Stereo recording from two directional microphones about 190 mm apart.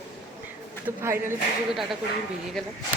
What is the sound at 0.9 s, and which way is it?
Speech, 10° right (ahead or behind).